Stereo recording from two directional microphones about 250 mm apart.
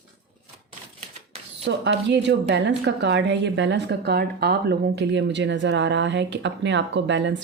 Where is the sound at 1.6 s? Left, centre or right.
Right.